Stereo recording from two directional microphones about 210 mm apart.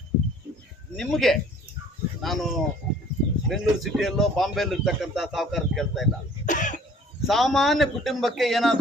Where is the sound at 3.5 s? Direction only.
Centre (ahead or behind).